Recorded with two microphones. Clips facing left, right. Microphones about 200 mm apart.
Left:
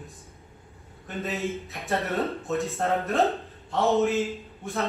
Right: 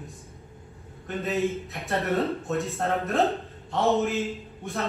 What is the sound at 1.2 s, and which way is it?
Speech, 15° right (ahead or behind).